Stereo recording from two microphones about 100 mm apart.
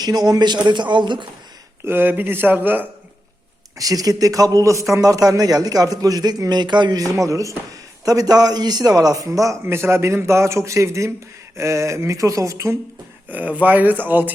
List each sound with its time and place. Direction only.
0.0 s speech: 45° right (ahead or behind)
1.8 s speech: 20° right (ahead or behind)
3.8 s a man's voice: 35° right (ahead or behind)
13.2 s speech: 15° right (ahead or behind)